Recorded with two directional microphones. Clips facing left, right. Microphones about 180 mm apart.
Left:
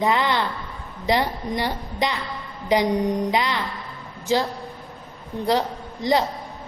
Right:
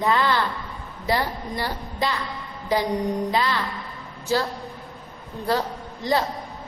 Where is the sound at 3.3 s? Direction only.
20° left (ahead or behind).